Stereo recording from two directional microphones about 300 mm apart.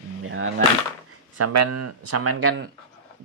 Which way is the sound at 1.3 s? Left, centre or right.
Right.